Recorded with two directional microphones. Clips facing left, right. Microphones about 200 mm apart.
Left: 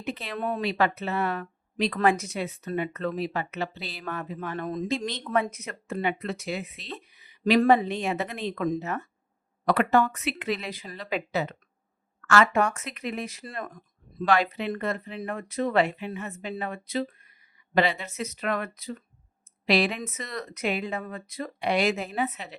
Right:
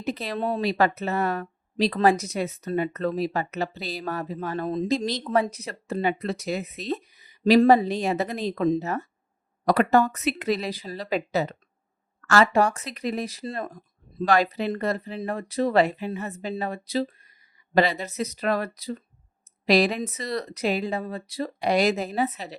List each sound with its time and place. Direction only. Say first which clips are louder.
0.0 s speech: right 4 dB; 35° right (ahead or behind)